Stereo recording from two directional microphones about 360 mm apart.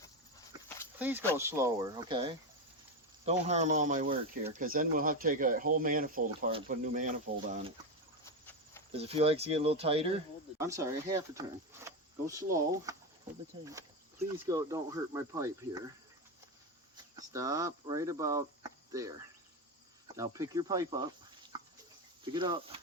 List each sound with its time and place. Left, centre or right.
0.5 s a sound: centre
0.9 s speech: centre; by 7.1 s right
8.2 s a sound: centre
8.9 s speech: centre
14.4 s speech: centre
17.2 s speech: centre
20.1 s speech: centre
22.2 s speech: centre